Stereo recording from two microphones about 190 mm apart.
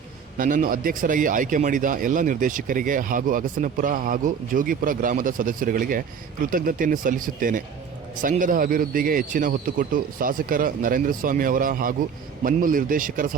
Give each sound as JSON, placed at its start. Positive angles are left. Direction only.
{"t": 0.3, "sound": "speech", "side_deg": -45}